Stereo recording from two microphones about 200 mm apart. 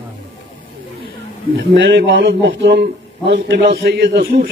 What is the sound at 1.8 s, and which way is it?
A man's voice, 65° right (ahead or behind).